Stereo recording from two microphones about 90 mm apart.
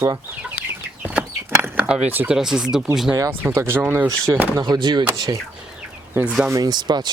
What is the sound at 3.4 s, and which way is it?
Speech, 25° right (ahead or behind).